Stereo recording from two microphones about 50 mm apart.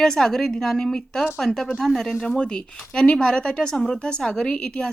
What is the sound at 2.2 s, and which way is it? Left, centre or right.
Speech, centre.